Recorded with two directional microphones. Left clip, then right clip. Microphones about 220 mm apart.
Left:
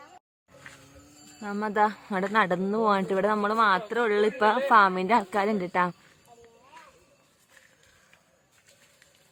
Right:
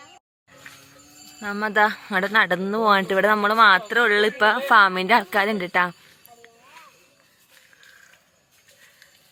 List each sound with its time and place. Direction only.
1.4 s speech: centre (ahead or behind)